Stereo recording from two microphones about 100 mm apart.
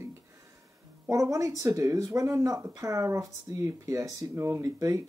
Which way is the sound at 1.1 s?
35° right (ahead or behind).